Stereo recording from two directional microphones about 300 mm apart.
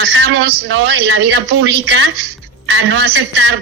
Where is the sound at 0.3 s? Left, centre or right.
Right.